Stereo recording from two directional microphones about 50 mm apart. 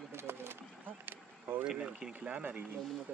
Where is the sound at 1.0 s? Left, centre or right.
Right.